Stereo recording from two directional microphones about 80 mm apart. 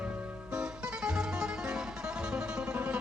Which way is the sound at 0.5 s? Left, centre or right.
Centre.